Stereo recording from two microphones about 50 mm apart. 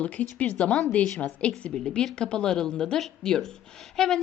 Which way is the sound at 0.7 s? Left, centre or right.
Centre.